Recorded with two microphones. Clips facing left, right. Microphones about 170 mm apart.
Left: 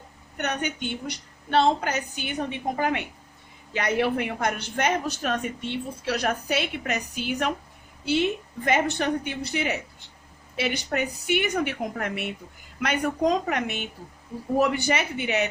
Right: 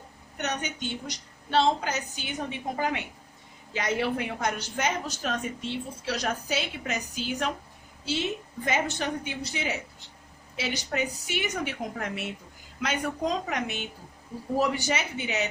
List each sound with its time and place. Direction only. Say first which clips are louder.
0.3 s a woman's voice: left 3 dB; 60° left (ahead or behind)